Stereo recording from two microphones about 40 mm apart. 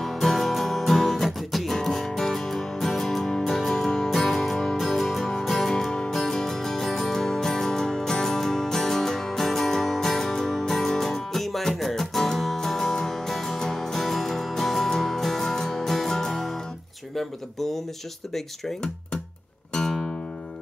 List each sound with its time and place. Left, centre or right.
0.0 s music: centre
17.1 s a sound: centre
19.7 s music: centre